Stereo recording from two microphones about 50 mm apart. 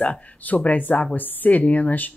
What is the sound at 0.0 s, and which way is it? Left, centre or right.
A woman's voice, left.